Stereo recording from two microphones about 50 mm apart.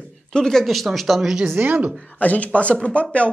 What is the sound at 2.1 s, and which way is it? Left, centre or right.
Speech, left.